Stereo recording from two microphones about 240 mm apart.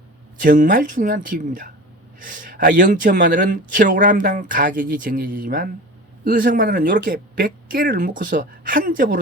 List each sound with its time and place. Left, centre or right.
0.4 s speech: right